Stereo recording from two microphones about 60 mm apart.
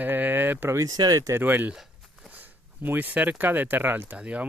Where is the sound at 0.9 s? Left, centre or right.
Right.